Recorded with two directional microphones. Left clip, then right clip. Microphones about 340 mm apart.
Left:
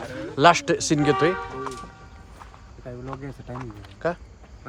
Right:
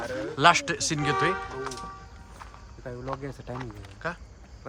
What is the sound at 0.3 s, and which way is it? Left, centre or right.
Speech, centre.